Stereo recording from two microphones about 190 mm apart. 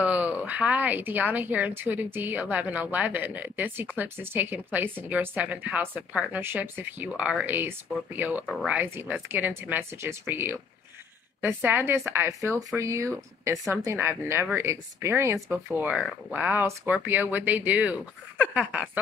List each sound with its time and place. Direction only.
0.0 s speech: 5° right (ahead or behind)